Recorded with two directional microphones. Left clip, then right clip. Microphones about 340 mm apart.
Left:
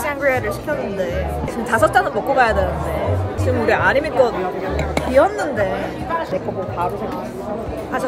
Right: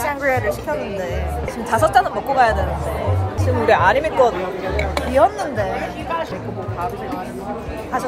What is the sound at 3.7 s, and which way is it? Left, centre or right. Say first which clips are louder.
Speech: right 2 dB; centre.